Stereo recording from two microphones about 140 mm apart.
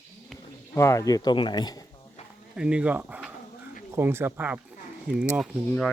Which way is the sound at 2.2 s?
50° left (ahead or behind).